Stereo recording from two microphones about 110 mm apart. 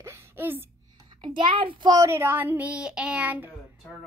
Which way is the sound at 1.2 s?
45° right (ahead or behind).